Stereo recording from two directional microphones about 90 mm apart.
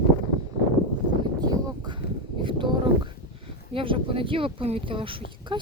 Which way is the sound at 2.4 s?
65° right (ahead or behind).